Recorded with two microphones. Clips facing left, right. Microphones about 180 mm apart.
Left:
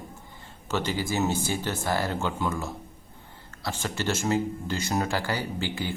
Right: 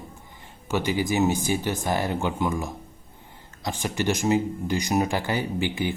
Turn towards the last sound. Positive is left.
turn(degrees=-15)  # may be behind; listen again after turning